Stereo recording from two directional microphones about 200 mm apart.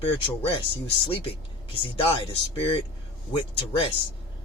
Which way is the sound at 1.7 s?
25° left (ahead or behind).